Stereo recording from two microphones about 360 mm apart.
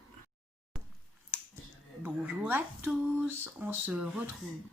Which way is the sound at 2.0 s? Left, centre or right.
Centre.